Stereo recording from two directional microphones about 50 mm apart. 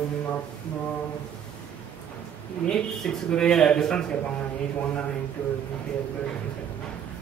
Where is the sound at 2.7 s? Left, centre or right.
Centre.